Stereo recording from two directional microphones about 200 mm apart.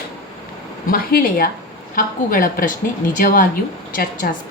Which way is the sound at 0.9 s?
45° left (ahead or behind).